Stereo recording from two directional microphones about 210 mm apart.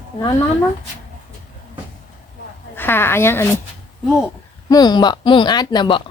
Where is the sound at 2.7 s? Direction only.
10° left (ahead or behind).